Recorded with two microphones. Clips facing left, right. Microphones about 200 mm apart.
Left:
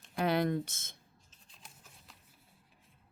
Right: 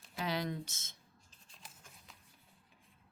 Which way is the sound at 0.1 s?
55° left (ahead or behind).